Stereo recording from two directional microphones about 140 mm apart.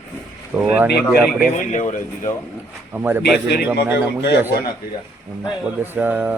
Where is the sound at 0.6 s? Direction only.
10° right (ahead or behind).